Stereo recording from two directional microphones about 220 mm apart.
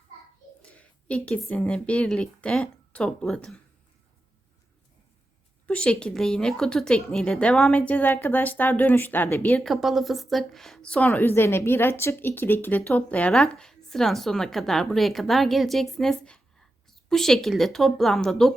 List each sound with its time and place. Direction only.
0.6 s a woman's voice: 5° left (ahead or behind)
5.6 s a woman's voice: 5° left (ahead or behind)